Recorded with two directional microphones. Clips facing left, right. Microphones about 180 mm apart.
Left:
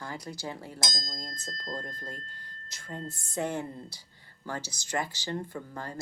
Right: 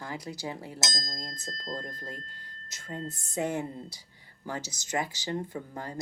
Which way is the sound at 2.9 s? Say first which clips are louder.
Right 2 dB; 20° right (ahead or behind).